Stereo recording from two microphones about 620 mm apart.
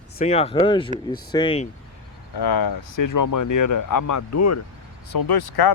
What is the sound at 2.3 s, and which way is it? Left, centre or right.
Speech, left.